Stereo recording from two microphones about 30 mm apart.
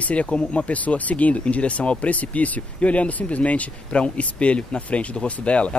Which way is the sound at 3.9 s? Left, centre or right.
Left.